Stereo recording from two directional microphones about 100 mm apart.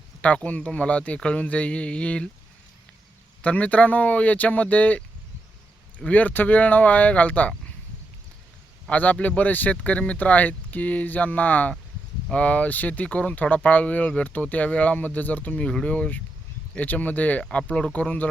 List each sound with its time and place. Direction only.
0.2 s speech: 15° left (ahead or behind)
3.4 s speech: 15° left (ahead or behind)
8.9 s speech: 15° left (ahead or behind)